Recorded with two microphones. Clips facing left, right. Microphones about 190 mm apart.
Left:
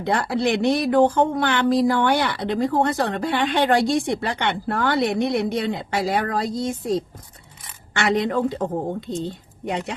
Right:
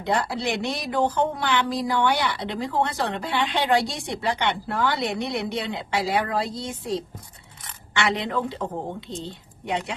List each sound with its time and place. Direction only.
0.0 s speech: 55° left (ahead or behind)